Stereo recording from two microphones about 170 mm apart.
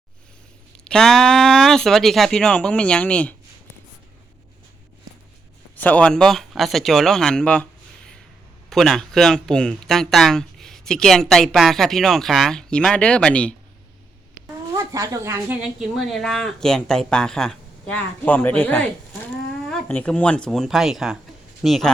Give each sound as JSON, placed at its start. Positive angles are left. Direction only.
{"t": 0.9, "sound": "speech", "side_deg": 5}
{"t": 5.7, "sound": "speech", "side_deg": 10}
{"t": 14.9, "sound": "speech", "side_deg": -20}
{"t": 15.6, "sound": "speech", "side_deg": 0}